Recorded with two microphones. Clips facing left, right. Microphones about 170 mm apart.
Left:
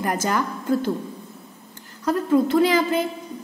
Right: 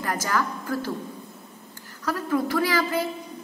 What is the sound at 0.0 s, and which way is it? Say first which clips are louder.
Speech: left 3 dB; 20° left (ahead or behind).